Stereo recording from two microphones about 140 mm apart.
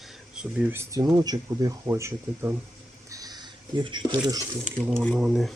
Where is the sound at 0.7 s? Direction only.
20° right (ahead or behind).